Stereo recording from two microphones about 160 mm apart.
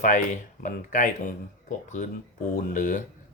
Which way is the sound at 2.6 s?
55° left (ahead or behind).